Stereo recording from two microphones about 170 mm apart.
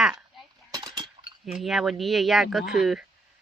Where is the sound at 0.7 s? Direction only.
25° right (ahead or behind).